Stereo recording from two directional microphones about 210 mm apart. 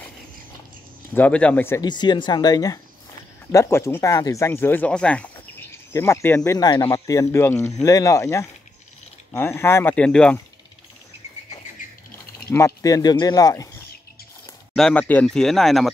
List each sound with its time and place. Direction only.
1.1 s speech: 5° left (ahead or behind)
12.4 s speech: 15° left (ahead or behind)
14.8 s speech: 5° left (ahead or behind)